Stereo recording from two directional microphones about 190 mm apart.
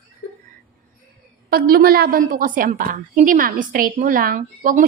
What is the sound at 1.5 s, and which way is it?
A woman's voice, 55° right (ahead or behind).